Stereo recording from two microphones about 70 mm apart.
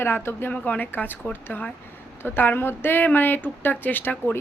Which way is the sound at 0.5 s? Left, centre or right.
Left.